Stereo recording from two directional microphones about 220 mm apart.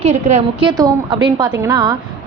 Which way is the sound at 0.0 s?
30° right (ahead or behind).